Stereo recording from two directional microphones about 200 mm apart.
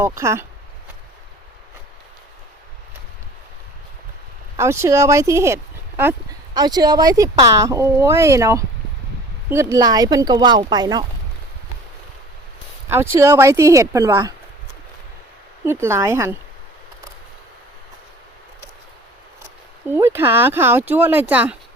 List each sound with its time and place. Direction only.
0.2 s speech: 15° right (ahead or behind)
4.5 s speech: 15° right (ahead or behind)
13.1 s speech: 15° right (ahead or behind)
15.6 s speech: 10° right (ahead or behind)
19.9 s speech: 10° right (ahead or behind)